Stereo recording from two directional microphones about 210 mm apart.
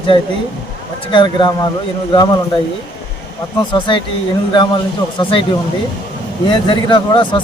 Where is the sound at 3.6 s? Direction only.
20° left (ahead or behind).